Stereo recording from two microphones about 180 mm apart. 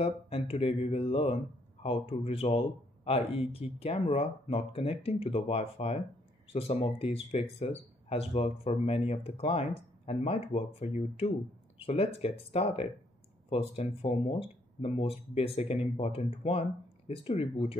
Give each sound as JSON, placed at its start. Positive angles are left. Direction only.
{"t": 0.0, "sound": "speech", "side_deg": 35}